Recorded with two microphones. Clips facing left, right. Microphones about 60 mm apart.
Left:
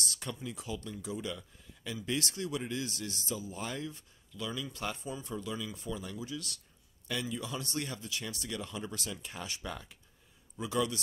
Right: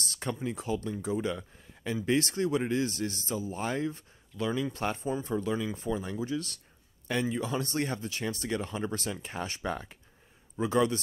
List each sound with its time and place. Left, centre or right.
0.0 s speech: right